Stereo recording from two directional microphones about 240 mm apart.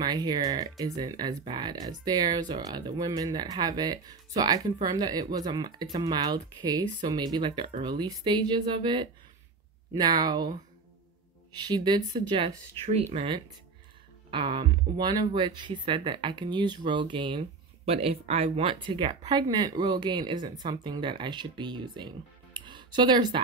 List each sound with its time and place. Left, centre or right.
0.0 s speech: centre